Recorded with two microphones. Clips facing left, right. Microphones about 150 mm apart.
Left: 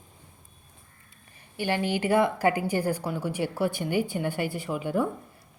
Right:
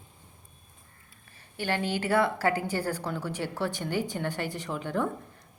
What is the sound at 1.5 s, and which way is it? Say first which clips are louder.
A woman's voice: left 3 dB; 15° left (ahead or behind).